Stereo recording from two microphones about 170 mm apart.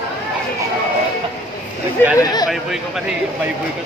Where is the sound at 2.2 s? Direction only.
25° left (ahead or behind).